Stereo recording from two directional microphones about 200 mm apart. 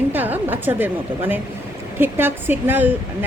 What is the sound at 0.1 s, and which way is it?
A woman's voice, 10° right (ahead or behind).